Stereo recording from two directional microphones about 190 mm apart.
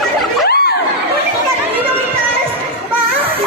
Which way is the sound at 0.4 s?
55° left (ahead or behind).